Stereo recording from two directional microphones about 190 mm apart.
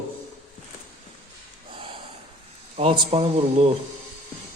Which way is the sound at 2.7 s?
30° right (ahead or behind).